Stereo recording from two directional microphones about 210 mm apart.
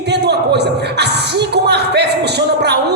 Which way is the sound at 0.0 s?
55° right (ahead or behind).